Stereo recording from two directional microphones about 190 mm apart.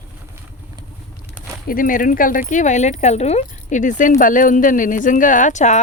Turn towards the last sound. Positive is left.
turn(degrees=40)  # may be behind; listen again after turning